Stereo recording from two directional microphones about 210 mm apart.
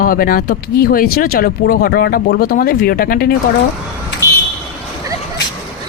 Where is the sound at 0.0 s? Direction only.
45° left (ahead or behind).